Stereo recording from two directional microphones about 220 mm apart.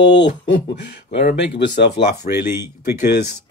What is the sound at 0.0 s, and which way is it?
Speech, 55° left (ahead or behind).